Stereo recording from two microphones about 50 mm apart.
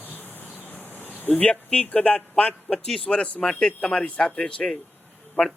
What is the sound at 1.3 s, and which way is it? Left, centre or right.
A man's voice, left.